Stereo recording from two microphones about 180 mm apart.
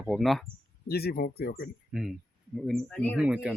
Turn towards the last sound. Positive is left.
turn(degrees=-5)  # may be behind; listen again after turning